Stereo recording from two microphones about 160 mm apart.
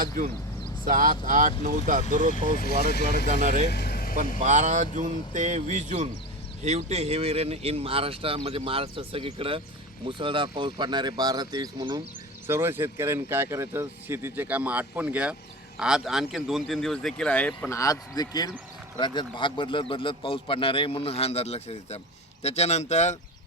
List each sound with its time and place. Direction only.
0.9 s speech: 55° right (ahead or behind)
2.6 s speech: 80° left
3.2 s speech: 55° right (ahead or behind)
3.7 s vehicle: 80° left
4.4 s speech: 50° right (ahead or behind); by 12.0 s 25° right (ahead or behind)
12.5 s speech: 15° right (ahead or behind); by 17.7 s 10° left (ahead or behind)
17.7 s a man's voice: 20° left (ahead or behind); by 23.1 s 45° left (ahead or behind)